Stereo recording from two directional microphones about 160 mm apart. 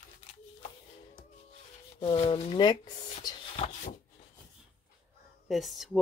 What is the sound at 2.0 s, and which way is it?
Speech, 40° left (ahead or behind).